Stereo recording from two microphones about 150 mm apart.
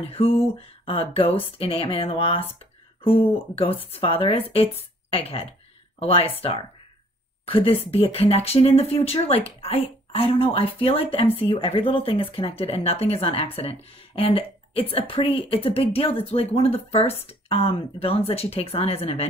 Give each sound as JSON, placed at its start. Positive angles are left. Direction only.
{"t": 0.0, "sound": "speech", "side_deg": 40}
{"t": 7.4, "sound": "speech", "side_deg": 40}